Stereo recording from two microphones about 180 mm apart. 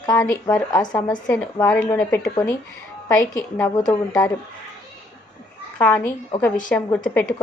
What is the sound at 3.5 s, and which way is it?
Speech, 15° left (ahead or behind).